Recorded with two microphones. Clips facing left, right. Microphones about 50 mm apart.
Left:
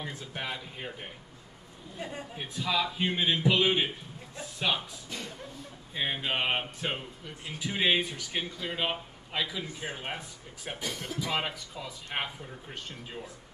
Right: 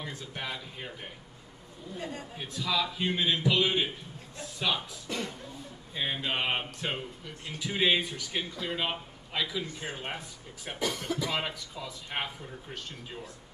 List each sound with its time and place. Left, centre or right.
0.0 s speech: centre
2.0 s speech: centre
5.1 s a sound: right
6.2 s speech: centre